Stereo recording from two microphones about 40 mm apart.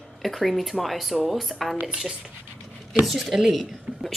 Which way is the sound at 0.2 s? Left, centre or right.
Centre.